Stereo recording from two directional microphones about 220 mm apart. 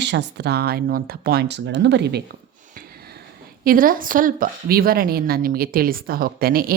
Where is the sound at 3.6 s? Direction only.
40° right (ahead or behind).